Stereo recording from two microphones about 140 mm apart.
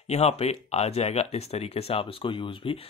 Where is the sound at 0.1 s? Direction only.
50° left (ahead or behind).